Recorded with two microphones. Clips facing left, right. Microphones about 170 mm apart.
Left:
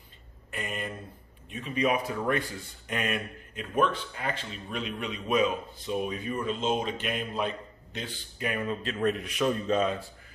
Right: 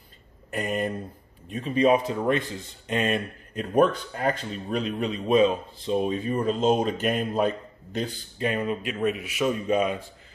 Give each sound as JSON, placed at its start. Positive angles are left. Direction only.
{"t": 0.5, "sound": "speech", "side_deg": -40}
{"t": 3.5, "sound": "a man's voice", "side_deg": -40}
{"t": 8.4, "sound": "a man's voice", "side_deg": -25}